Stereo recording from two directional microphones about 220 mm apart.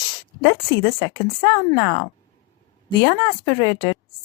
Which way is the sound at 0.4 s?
20° left (ahead or behind).